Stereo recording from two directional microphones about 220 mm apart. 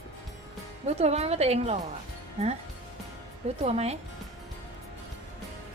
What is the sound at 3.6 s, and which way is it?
Speech, 30° right (ahead or behind).